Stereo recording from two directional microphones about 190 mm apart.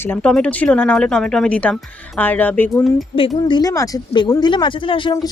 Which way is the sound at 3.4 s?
20° left (ahead or behind).